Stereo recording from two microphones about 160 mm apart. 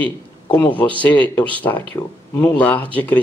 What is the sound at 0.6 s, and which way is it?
Speech, 10° left (ahead or behind).